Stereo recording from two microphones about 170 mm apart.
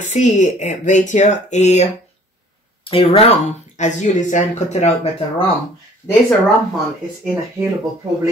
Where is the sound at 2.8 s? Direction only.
35° left (ahead or behind).